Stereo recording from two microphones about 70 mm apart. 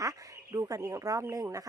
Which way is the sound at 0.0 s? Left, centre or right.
Right.